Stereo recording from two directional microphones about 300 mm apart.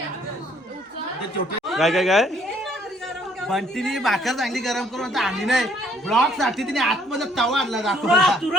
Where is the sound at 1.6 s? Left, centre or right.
Centre.